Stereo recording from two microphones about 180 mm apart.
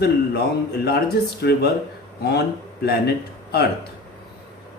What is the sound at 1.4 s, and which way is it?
Speech, 65° left (ahead or behind).